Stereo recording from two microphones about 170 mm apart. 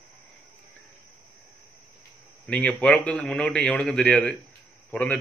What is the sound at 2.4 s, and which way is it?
A man's voice, 5° left (ahead or behind).